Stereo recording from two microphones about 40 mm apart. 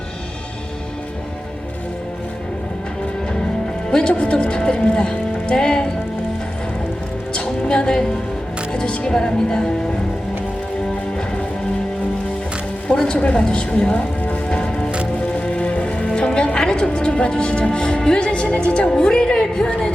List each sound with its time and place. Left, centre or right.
3.8 s speech: left
5.5 s music: left
7.3 s music: left
12.9 s music: left
18.9 s a woman's voice: left